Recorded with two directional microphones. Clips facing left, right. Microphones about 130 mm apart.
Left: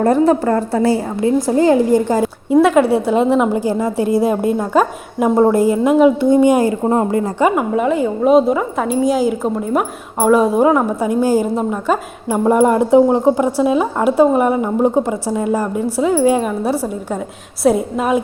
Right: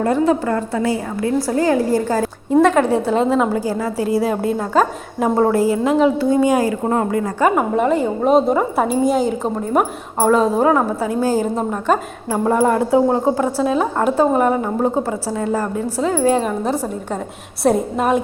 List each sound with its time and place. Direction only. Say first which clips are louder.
0.0 s a woman's voice: left 4 dB; 40° left (ahead or behind)
1.2 s a woman's voice: left 4 dB; 25° left (ahead or behind)
2.2 s a woman's voice: left 2 dB; 10° left (ahead or behind); by 7.4 s 25° left (ahead or behind)
7.4 s a woman's voice: even; centre (ahead or behind)
12.3 s a woman's voice: left 3 dB; 20° left (ahead or behind); by 18.2 s centre (ahead or behind)